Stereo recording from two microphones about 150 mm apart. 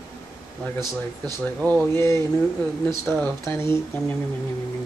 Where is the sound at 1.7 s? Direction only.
15° left (ahead or behind).